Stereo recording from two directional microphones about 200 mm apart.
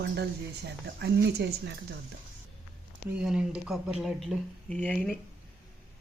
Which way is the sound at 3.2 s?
5° right (ahead or behind).